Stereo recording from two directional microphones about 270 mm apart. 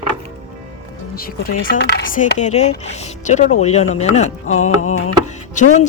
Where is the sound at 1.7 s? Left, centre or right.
Left.